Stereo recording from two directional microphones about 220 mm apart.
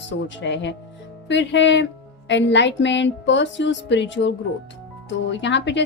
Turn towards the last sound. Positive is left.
turn(degrees=55)  # may be behind; listen again after turning